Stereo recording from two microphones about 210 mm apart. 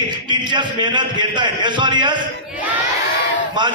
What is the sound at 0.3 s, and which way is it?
A man's voice, 20° right (ahead or behind).